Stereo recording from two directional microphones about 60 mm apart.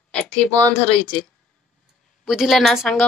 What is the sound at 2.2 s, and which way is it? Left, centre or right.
Speech, centre.